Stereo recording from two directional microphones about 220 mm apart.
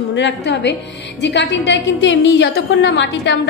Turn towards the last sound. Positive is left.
turn(degrees=55)  # may be behind; listen again after turning